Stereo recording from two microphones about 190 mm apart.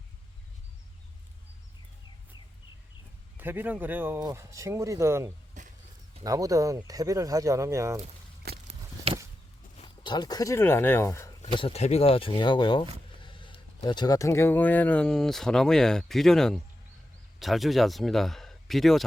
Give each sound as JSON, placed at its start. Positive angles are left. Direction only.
{"t": 3.3, "sound": "speech", "side_deg": -10}
{"t": 5.6, "sound": "a sound", "side_deg": -40}
{"t": 6.2, "sound": "speech", "side_deg": -15}
{"t": 9.1, "sound": "a sound", "side_deg": -30}
{"t": 9.7, "sound": "speech", "side_deg": 25}
{"t": 11.5, "sound": "speech", "side_deg": 30}